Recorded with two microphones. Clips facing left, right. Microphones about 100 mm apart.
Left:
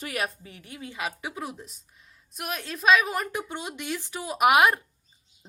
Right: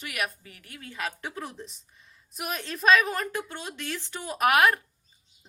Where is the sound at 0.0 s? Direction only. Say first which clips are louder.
Left 2 dB; 30° left (ahead or behind); by 1.1 s 15° left (ahead or behind).